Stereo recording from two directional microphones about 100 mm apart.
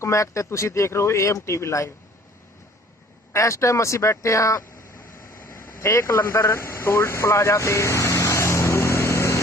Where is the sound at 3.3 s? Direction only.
30° left (ahead or behind).